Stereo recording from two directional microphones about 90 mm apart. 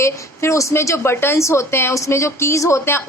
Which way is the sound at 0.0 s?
35° left (ahead or behind).